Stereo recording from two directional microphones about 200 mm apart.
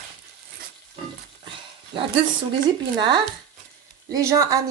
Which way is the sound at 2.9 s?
20° right (ahead or behind).